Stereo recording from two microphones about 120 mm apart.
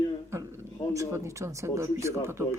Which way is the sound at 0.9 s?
25° right (ahead or behind).